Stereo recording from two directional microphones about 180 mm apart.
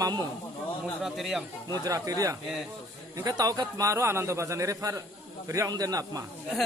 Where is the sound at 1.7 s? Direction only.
20° right (ahead or behind).